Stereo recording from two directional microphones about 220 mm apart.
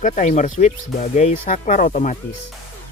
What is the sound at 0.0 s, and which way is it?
Speech, 35° left (ahead or behind).